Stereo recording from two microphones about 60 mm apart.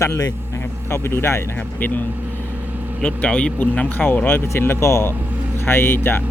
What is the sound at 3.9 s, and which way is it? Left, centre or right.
Speech, left.